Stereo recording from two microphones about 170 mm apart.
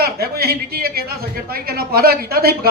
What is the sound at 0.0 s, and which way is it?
Speech, 65° right (ahead or behind).